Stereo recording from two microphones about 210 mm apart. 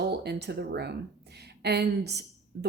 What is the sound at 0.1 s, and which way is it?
Speech, 50° right (ahead or behind).